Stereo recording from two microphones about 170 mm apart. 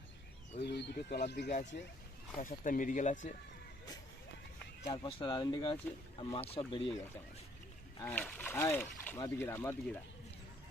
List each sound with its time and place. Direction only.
0.6 s speech: 85° left
2.4 s speech: 50° left (ahead or behind)
4.9 s speech: 30° left (ahead or behind)
8.0 s speech: 10° left (ahead or behind)